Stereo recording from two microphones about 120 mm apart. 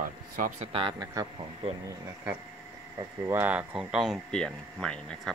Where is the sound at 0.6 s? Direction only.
50° right (ahead or behind).